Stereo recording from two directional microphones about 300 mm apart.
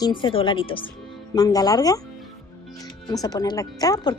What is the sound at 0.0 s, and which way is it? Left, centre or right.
Speech, centre.